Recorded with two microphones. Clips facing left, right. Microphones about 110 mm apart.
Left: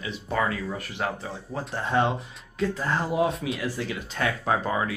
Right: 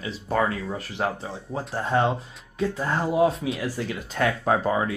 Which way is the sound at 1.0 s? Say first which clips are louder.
Right 3 dB; 25° right (ahead or behind).